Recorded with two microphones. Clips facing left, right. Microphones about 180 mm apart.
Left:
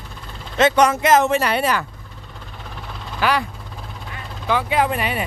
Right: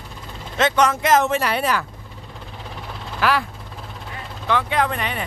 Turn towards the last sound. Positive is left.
turn(degrees=10)  # may be behind; listen again after turning